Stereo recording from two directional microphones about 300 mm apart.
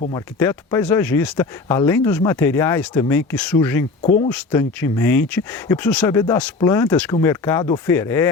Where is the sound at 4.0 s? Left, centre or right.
Left.